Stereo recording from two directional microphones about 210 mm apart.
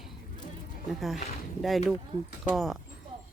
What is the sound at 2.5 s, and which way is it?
Speech, centre (ahead or behind).